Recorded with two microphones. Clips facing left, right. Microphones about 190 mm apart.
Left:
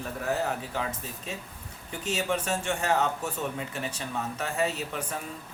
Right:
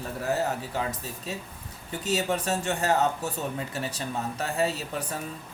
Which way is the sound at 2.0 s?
35° right (ahead or behind).